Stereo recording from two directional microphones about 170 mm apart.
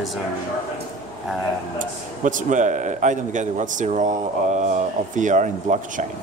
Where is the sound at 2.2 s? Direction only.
50° right (ahead or behind).